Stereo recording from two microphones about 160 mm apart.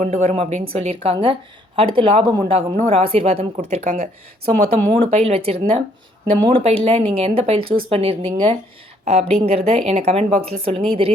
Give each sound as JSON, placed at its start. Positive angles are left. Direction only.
{"t": 0.0, "sound": "a woman's voice", "side_deg": -40}